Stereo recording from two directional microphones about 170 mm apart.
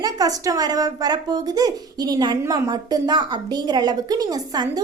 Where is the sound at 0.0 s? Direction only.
20° right (ahead or behind).